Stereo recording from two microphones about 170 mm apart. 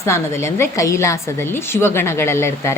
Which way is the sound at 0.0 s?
15° left (ahead or behind).